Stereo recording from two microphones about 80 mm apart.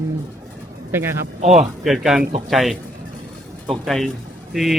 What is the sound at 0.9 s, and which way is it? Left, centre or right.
Speech, right.